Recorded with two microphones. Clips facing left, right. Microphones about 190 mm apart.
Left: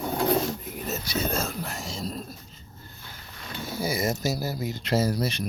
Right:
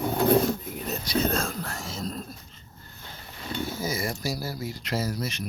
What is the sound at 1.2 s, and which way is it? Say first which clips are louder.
Speech: right 3 dB; 5° left (ahead or behind).